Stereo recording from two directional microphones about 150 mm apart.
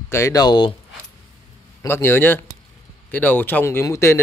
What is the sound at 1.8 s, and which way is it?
A man's voice, 15° left (ahead or behind).